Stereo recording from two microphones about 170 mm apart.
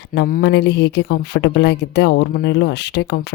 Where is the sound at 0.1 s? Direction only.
55° left (ahead or behind).